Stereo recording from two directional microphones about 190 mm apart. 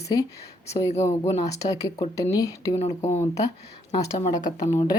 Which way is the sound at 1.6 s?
20° left (ahead or behind).